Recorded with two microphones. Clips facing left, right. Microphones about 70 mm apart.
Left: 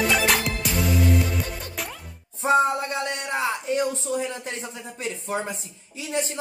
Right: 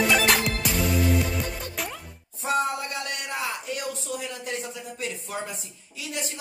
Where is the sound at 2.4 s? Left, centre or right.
Left.